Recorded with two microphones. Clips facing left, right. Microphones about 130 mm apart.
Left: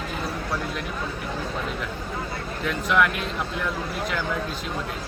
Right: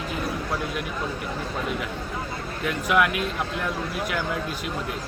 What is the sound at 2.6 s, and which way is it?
Speech, 5° right (ahead or behind).